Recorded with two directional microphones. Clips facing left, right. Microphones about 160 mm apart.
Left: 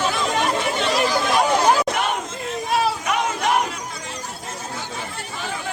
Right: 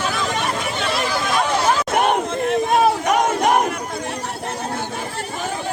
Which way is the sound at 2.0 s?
50° right (ahead or behind).